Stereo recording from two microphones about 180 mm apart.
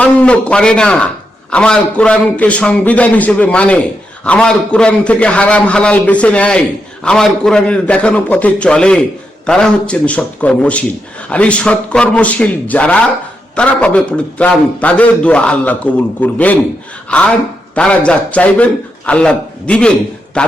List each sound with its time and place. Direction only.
0.0 s a man's voice: 5° left (ahead or behind)